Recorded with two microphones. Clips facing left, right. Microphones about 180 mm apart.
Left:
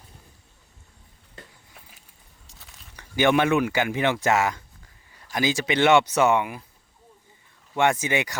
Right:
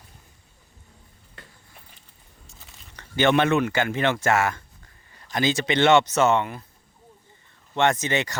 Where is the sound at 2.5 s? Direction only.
Centre (ahead or behind).